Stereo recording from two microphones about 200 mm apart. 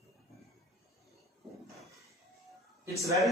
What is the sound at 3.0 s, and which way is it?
Speech, 15° right (ahead or behind).